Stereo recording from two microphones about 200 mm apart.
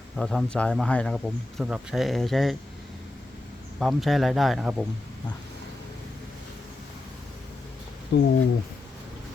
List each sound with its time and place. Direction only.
0.2 s speech: 5° left (ahead or behind)
3.8 s speech: centre (ahead or behind)
8.1 s speech: 60° left (ahead or behind)